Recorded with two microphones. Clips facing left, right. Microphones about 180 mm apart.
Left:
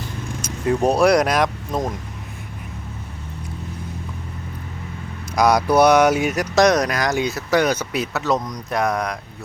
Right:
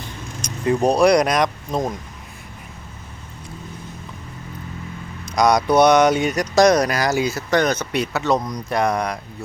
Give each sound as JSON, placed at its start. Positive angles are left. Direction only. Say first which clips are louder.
{"t": 0.4, "sound": "speech", "louder": "right 1 dB", "side_deg": 0}
{"t": 5.3, "sound": "speech", "louder": "even", "side_deg": 5}